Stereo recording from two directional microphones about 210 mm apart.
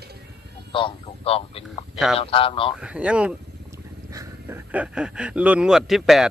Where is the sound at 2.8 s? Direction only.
5° right (ahead or behind).